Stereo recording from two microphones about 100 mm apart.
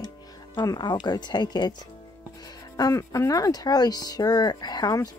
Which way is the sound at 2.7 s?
35° left (ahead or behind).